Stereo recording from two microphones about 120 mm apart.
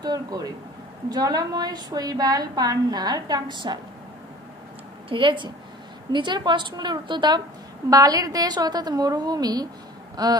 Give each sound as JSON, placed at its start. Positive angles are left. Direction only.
{"t": 0.0, "sound": "a woman's voice", "side_deg": -35}
{"t": 5.1, "sound": "a woman's voice", "side_deg": -45}